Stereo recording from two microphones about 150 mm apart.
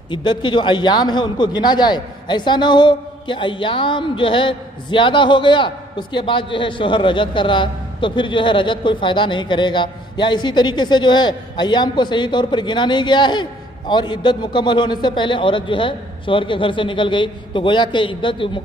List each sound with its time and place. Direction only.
0.1 s a man's voice: 30° left (ahead or behind)